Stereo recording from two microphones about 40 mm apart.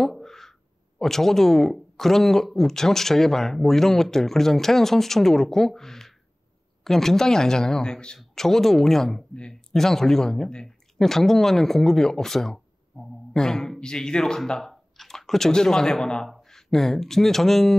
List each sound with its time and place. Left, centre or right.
0.0 s speech: centre
9.3 s speech: left
9.7 s speech: centre